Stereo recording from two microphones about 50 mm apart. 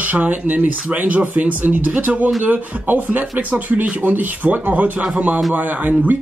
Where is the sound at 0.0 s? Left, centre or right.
Right.